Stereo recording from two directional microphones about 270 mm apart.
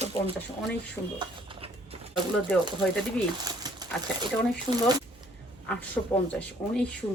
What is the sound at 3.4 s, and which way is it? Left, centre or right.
Speech, centre.